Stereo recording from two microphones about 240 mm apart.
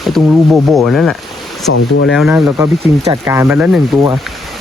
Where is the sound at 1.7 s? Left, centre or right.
Left.